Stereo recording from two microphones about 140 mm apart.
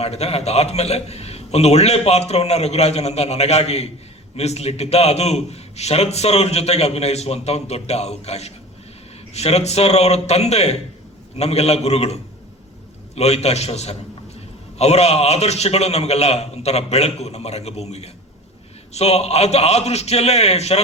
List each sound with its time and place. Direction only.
0.0 s a man's voice: 50° left (ahead or behind)
13.1 s a man's voice: 50° left (ahead or behind)